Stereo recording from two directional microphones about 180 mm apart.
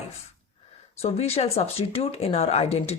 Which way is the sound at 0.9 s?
35° left (ahead or behind).